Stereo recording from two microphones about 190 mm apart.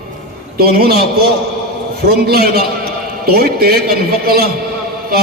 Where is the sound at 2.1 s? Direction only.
55° right (ahead or behind).